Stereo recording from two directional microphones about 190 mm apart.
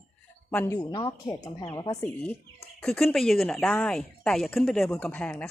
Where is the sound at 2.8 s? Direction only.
5° left (ahead or behind).